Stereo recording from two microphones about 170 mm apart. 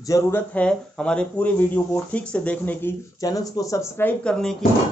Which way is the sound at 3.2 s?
20° left (ahead or behind).